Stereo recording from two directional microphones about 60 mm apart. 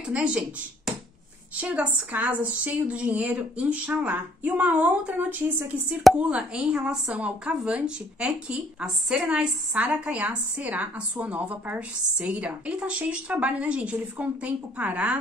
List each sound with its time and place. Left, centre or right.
0.0 s speech: centre
1.6 s a woman's voice: right